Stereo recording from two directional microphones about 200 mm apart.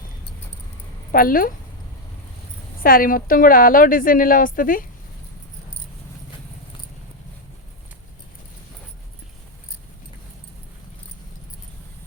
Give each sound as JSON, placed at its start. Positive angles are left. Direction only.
{"t": 1.1, "sound": "a woman's voice", "side_deg": 45}
{"t": 2.8, "sound": "a woman's voice", "side_deg": 45}